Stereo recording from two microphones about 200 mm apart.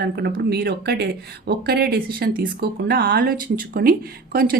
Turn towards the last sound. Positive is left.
turn(degrees=-50)  # may be behind; listen again after turning